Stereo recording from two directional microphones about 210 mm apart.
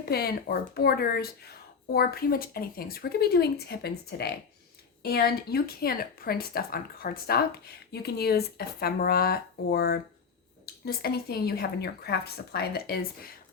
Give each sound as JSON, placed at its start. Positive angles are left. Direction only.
{"t": 0.0, "sound": "speech", "side_deg": 45}